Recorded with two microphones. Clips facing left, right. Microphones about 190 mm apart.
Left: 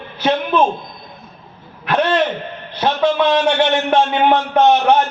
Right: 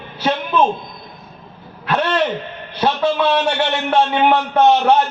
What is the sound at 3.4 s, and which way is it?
A man's voice, 20° left (ahead or behind).